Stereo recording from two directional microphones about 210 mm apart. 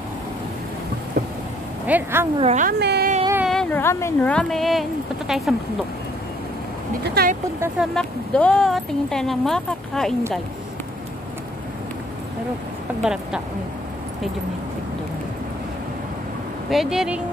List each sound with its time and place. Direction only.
1.9 s speech: 10° right (ahead or behind)
2.3 s speech: 30° right (ahead or behind)
2.8 s speech: 50° right (ahead or behind)
3.3 s speech: centre (ahead or behind)
7.1 s speech: 50° right (ahead or behind)
7.6 s speech: centre (ahead or behind)
13.0 s speech: 5° right (ahead or behind)
16.7 s speech: centre (ahead or behind)